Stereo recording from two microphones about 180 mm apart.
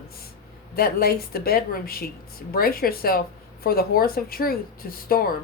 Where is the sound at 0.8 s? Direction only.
60° left (ahead or behind).